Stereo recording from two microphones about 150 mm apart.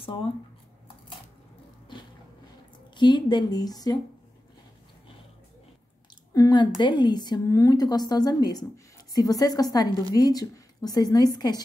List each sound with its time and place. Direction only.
3.0 s a woman's voice: 30° left (ahead or behind)
6.3 s a woman's voice: 25° left (ahead or behind)